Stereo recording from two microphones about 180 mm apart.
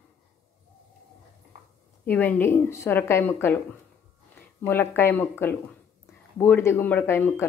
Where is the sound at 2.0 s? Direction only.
10° left (ahead or behind).